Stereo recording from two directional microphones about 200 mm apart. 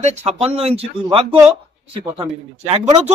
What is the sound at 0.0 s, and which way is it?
Speech, 35° right (ahead or behind).